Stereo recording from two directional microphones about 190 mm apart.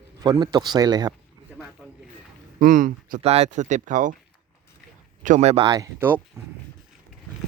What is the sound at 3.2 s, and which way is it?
Speech, 35° right (ahead or behind).